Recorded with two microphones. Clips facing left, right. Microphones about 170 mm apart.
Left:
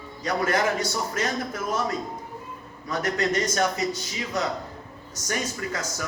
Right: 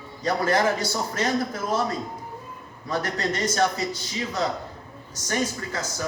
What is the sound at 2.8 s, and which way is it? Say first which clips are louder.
Speech: left 1 dB; 30° right (ahead or behind).